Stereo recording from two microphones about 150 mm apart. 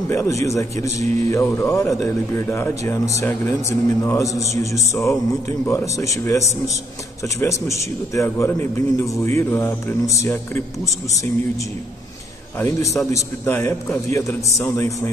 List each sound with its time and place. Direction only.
0.1 s a man's voice: 20° left (ahead or behind)
12.5 s a man's voice: 15° left (ahead or behind)